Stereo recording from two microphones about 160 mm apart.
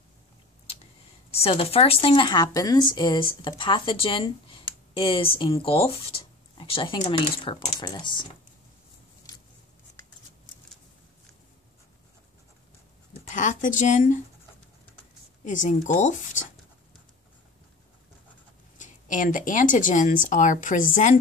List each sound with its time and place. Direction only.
1.3 s a woman's voice: 35° left (ahead or behind)
13.3 s speech: 50° left (ahead or behind)
15.4 s speech: 55° left (ahead or behind)
18.8 s speech: 50° left (ahead or behind)